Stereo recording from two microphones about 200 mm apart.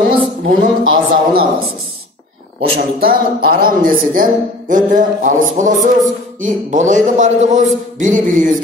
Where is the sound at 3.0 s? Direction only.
50° right (ahead or behind).